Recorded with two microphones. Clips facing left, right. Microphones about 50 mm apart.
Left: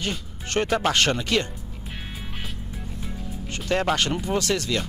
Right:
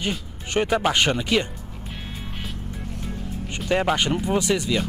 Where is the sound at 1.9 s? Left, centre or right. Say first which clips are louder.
Right 1 dB; centre.